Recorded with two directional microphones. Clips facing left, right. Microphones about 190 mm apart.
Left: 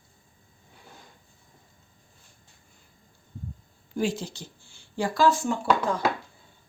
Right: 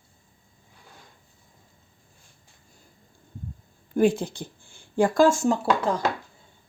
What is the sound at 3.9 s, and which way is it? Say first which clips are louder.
Speech: right 7 dB; 55° right (ahead or behind).